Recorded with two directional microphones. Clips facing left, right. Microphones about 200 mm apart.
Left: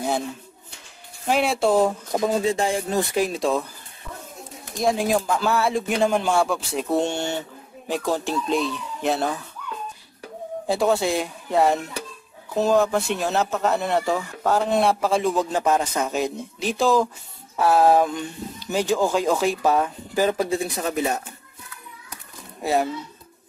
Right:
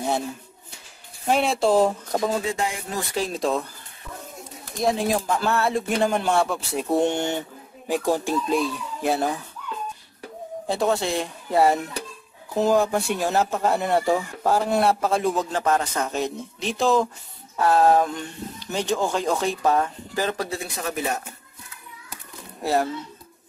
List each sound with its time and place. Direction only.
1.2 s speech: centre (ahead or behind)
2.2 s speech: 30° left (ahead or behind)
3.2 s speech: centre (ahead or behind)
4.8 s speech: centre (ahead or behind)
6.9 s speech: 15° right (ahead or behind)
10.7 s speech: 5° left (ahead or behind)
15.5 s speech: 15° left (ahead or behind)
20.4 s speech: 25° left (ahead or behind)
22.6 s speech: centre (ahead or behind)